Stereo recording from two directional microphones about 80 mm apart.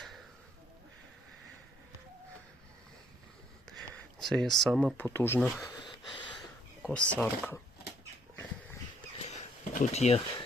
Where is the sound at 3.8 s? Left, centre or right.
Centre.